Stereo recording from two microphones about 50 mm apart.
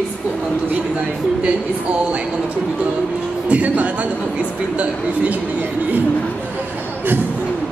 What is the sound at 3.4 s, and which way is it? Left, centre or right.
Speech, right.